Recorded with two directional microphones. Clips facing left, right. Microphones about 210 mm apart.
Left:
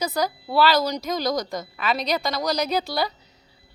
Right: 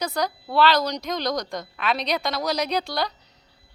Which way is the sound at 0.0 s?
5° left (ahead or behind).